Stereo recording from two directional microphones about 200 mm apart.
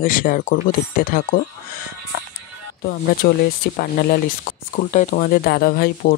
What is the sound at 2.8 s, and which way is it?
Speech, 50° left (ahead or behind).